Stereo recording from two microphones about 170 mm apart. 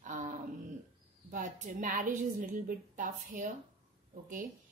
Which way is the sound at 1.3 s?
50° right (ahead or behind).